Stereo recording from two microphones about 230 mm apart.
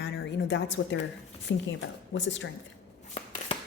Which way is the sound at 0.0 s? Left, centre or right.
Left.